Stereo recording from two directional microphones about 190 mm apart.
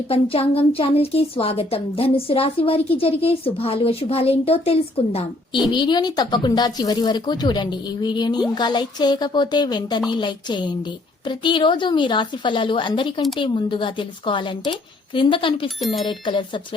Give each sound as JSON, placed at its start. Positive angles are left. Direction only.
{"t": 0.1, "sound": "a woman's voice", "side_deg": 30}